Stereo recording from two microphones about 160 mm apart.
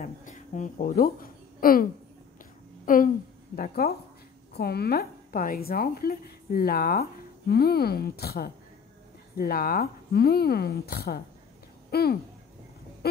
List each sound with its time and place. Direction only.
0.0 s a woman's voice: 50° left (ahead or behind); by 3.9 s 65° left (ahead or behind)
4.6 s speech: 80° left
13.0 s a sound: 75° left (ahead or behind)